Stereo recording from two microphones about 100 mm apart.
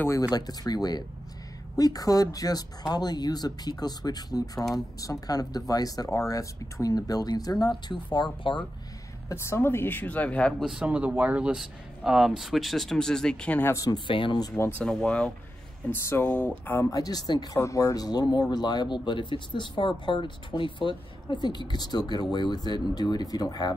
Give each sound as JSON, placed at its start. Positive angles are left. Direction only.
{"t": 0.2, "sound": "speech", "side_deg": 40}
{"t": 7.9, "sound": "speech", "side_deg": 50}
{"t": 9.3, "sound": "a woman's voice", "side_deg": 25}
{"t": 10.6, "sound": "speech", "side_deg": -10}
{"t": 13.7, "sound": "speech", "side_deg": 35}
{"t": 13.9, "sound": "speech", "side_deg": 55}
{"t": 14.8, "sound": "speech", "side_deg": 10}
{"t": 15.9, "sound": "a woman's voice", "side_deg": 20}
{"t": 16.9, "sound": "speech", "side_deg": 40}